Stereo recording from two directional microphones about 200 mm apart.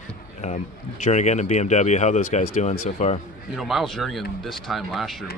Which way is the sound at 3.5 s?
Centre (ahead or behind).